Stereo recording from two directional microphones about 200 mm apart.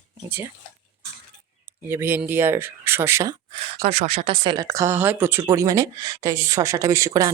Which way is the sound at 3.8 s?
35° right (ahead or behind).